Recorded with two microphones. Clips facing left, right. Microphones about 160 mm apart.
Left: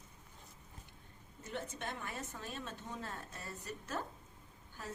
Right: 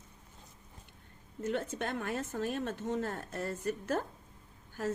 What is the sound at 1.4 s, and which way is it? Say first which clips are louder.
Speech: right 9 dB; 85° right.